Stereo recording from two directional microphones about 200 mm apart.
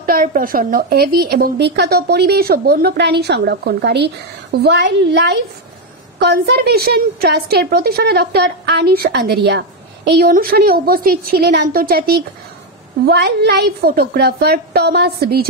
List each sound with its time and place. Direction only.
0.0 s a woman's voice: 45° right (ahead or behind)